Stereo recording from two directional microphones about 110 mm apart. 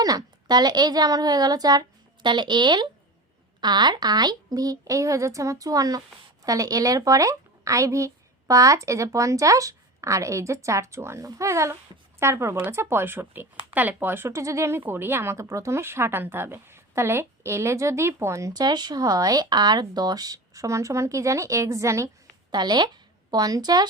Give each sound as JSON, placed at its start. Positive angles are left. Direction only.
{"t": 0.0, "sound": "a woman's voice", "side_deg": -35}
{"t": 22.5, "sound": "a woman's voice", "side_deg": -40}